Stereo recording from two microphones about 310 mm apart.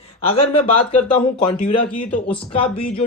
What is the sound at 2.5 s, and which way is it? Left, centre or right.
Speech, centre.